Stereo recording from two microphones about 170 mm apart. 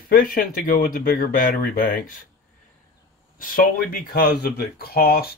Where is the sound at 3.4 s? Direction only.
55° left (ahead or behind).